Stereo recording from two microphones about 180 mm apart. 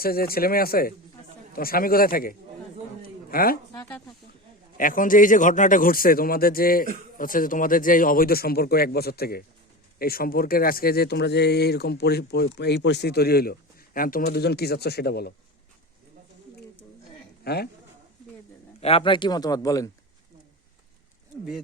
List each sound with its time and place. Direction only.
0.0 s a man's voice: 55° left (ahead or behind)
4.8 s a man's voice: 50° left (ahead or behind)
17.4 s a man's voice: 60° left (ahead or behind)
18.8 s speech: 30° left (ahead or behind)